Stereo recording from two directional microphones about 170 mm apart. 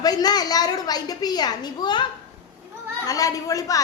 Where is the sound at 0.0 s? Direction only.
25° left (ahead or behind).